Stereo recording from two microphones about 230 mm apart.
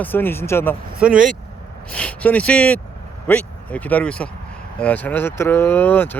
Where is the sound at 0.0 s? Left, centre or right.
Centre.